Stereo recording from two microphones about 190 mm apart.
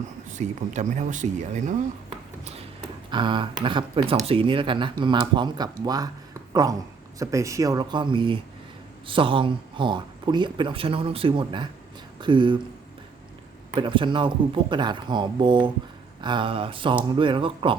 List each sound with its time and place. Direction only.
0.3 s speech: 40° right (ahead or behind)
13.7 s speech: 25° right (ahead or behind)